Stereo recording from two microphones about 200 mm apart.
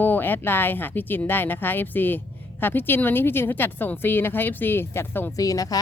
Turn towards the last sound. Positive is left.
turn(degrees=15)  # may be behind; listen again after turning